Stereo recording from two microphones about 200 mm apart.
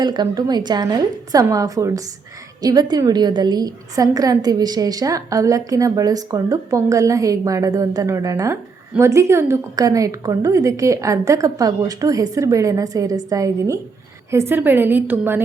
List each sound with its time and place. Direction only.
0.0 s a woman's voice: 20° right (ahead or behind)